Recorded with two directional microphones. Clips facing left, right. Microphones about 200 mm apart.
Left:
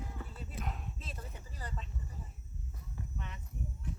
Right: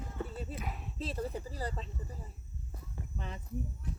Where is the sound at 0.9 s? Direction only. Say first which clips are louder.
Right 12 dB; 35° right (ahead or behind).